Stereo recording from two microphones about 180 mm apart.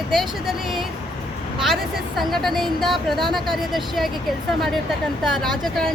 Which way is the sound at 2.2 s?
Centre (ahead or behind).